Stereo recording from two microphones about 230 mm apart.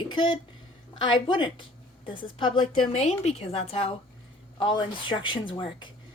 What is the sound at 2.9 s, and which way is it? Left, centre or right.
A woman's voice, left.